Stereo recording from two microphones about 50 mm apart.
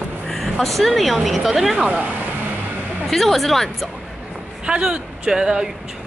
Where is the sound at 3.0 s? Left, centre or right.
Centre.